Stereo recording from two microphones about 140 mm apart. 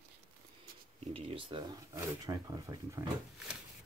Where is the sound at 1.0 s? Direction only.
45° right (ahead or behind); by 3.0 s 25° right (ahead or behind).